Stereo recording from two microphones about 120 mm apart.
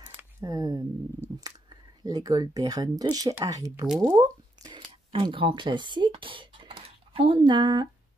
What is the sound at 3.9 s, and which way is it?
Squish, 30° right (ahead or behind).